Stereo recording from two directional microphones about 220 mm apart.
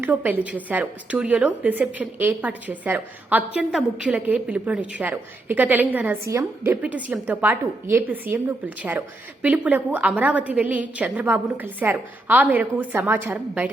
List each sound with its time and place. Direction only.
0.0 s a woman's voice: 10° right (ahead or behind)